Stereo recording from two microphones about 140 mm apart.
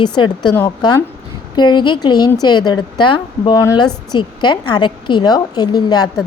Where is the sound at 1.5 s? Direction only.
30° left (ahead or behind).